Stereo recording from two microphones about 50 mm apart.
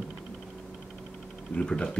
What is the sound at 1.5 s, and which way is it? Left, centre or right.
Speech, centre.